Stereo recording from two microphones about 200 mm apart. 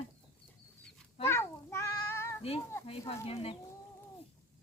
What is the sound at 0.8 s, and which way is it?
Cat, 10° left (ahead or behind).